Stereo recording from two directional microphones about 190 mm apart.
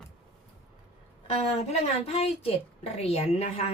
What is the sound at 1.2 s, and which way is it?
A woman's voice, 35° left (ahead or behind).